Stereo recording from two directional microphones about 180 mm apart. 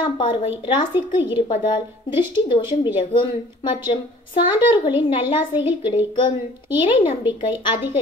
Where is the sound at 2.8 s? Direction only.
25° left (ahead or behind).